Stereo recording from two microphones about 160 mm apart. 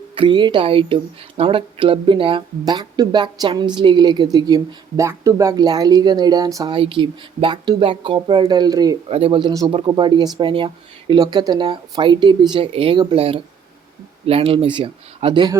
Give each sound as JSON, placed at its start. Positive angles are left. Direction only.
{"t": 0.2, "sound": "speech", "side_deg": -30}
{"t": 9.0, "sound": "speech", "side_deg": -35}